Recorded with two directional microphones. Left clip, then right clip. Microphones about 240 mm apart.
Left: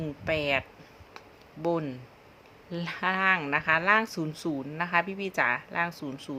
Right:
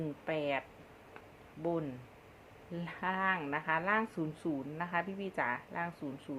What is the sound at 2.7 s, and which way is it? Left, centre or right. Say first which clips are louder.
Speech: left 8 dB; left.